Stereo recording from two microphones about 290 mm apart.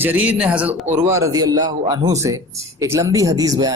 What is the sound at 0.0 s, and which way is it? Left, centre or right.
Speech, centre.